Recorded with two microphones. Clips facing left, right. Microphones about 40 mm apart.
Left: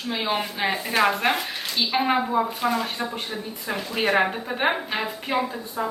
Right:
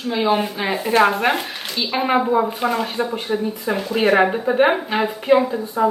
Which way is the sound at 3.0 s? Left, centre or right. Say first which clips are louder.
Right 9 dB; centre.